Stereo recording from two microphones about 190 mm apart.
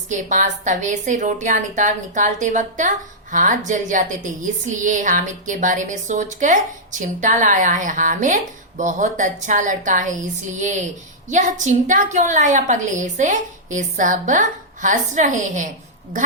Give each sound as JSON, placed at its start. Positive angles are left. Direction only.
{"t": 0.1, "sound": "a woman's voice", "side_deg": -40}
{"t": 11.3, "sound": "a woman's voice", "side_deg": -40}